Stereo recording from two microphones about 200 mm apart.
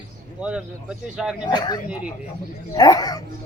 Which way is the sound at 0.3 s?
5° right (ahead or behind).